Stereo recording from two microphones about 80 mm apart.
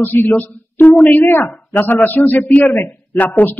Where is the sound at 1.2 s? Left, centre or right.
Left.